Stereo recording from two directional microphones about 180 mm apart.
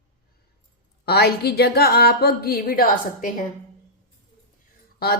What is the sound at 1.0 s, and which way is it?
A woman's voice, 60° left (ahead or behind).